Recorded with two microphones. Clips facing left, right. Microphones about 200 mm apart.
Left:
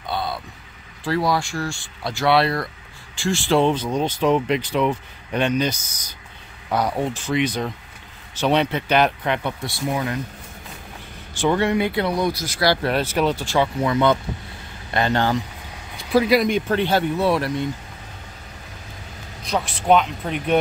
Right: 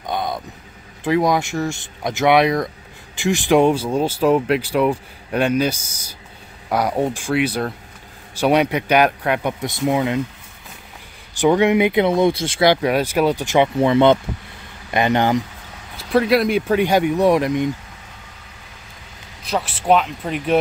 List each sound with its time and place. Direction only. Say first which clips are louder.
0.0 s vehicle: right 3 dB; 15° right (ahead or behind)
1.0 s speech: right 4 dB; 20° right (ahead or behind)
11.4 s speech: right 5 dB; 15° right (ahead or behind)
12.8 s speech: right 3 dB; 10° right (ahead or behind)
16.0 s speech: right 1 dB; centre (ahead or behind); by 17.6 s 15° right (ahead or behind)
19.4 s speech: right 1 dB; 5° right (ahead or behind)